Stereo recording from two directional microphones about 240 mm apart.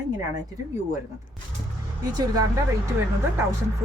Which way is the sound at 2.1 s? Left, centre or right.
Centre.